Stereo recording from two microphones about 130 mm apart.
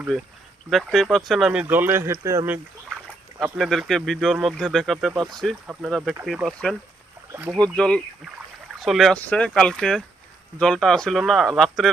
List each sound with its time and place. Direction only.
0.7 s speech: centre (ahead or behind)
1.6 s speech: 15° right (ahead or behind)
3.4 s speech: centre (ahead or behind)
7.3 s speech: 10° right (ahead or behind)
7.6 s speech: 10° left (ahead or behind)